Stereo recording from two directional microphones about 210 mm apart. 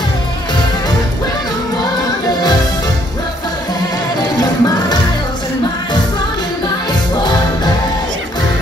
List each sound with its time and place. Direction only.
4.4 s music: 20° left (ahead or behind)